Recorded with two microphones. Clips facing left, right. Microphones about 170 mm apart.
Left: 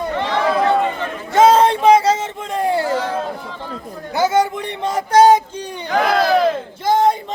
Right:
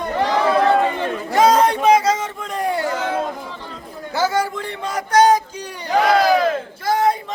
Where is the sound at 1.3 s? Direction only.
25° left (ahead or behind).